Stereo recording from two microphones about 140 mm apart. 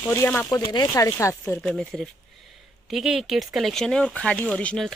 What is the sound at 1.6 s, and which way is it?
Speech, 5° left (ahead or behind).